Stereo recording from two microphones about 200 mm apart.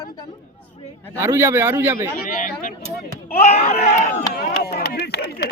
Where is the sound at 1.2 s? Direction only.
10° right (ahead or behind).